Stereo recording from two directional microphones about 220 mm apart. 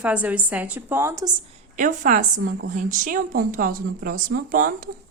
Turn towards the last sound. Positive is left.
turn(degrees=-40)  # may be behind; listen again after turning